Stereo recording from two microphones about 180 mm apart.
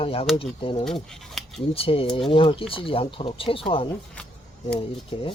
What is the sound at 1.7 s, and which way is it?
Speech, 30° left (ahead or behind).